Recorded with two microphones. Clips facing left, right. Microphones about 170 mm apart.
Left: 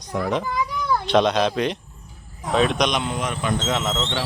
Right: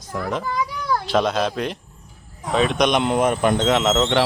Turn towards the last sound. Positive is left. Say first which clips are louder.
# right 7 dB
turn(degrees=-70)  # may be behind; listen again after turning